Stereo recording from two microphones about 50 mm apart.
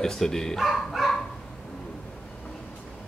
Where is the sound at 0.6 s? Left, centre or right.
Centre.